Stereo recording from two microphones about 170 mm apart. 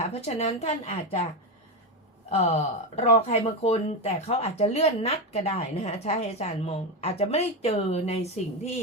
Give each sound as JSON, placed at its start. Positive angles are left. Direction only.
{"t": 0.0, "sound": "speech", "side_deg": 40}
{"t": 2.4, "sound": "speech", "side_deg": 35}